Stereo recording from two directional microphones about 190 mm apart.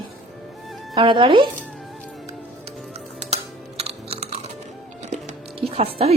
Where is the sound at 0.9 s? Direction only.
25° right (ahead or behind).